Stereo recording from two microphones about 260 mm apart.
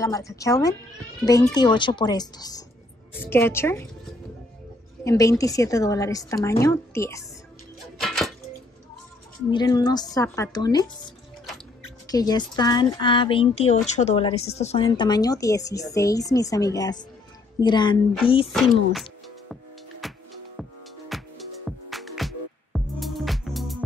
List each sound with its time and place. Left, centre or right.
0.0 s speech: centre
5.0 s speech: centre
8.0 s a sound: centre
9.5 s speech: centre
12.1 s speech: centre
18.5 s music: centre
21.1 s music: centre